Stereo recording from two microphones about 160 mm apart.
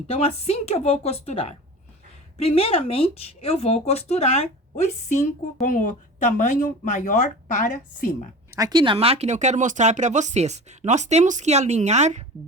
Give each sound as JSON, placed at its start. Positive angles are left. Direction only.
{"t": 0.1, "sound": "speech", "side_deg": 40}
{"t": 5.6, "sound": "speech", "side_deg": 55}
{"t": 8.5, "sound": "speech", "side_deg": -25}